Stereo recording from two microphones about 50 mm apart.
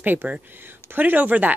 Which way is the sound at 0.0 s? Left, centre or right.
Right.